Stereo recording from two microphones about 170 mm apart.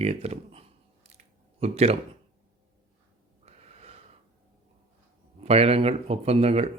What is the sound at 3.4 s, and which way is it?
Wheeze, 40° right (ahead or behind).